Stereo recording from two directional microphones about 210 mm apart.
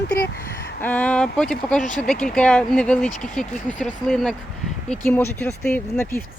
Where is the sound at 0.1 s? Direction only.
50° left (ahead or behind).